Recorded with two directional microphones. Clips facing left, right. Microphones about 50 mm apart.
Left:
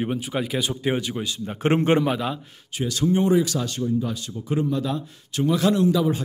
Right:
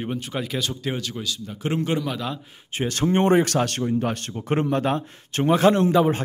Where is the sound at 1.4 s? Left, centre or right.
Left.